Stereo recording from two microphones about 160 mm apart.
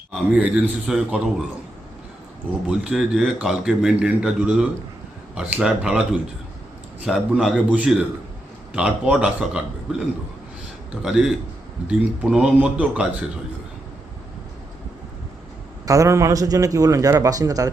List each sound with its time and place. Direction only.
0.3 s speech: 10° right (ahead or behind)
2.6 s a man's voice: 5° right (ahead or behind)
11.0 s a man's voice: 5° right (ahead or behind)
15.9 s a man's voice: 20° right (ahead or behind)